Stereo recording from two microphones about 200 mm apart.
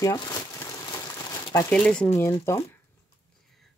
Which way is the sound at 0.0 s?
20° left (ahead or behind).